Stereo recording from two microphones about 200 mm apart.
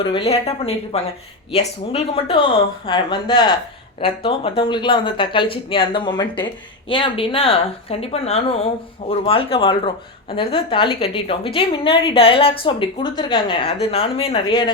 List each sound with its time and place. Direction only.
0.0 s speech: 25° left (ahead or behind)